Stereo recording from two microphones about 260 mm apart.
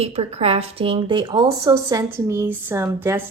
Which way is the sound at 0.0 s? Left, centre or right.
Right.